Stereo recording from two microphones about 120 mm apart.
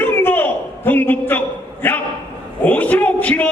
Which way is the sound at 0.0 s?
15° left (ahead or behind).